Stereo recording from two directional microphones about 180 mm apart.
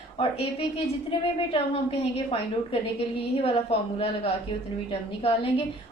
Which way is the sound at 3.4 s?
30° left (ahead or behind).